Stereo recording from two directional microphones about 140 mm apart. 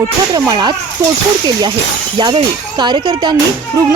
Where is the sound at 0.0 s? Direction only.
25° right (ahead or behind).